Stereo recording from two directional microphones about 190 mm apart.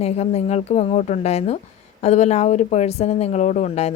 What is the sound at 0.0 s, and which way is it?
A woman's voice, 35° left (ahead or behind).